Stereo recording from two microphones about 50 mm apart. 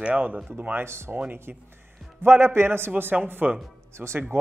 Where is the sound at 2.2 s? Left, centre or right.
Right.